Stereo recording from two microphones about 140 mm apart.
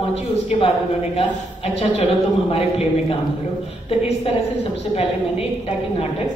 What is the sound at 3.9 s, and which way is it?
A woman's voice, 40° left (ahead or behind).